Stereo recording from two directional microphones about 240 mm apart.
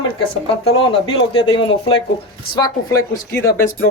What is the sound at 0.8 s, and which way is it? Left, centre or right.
Speech, centre.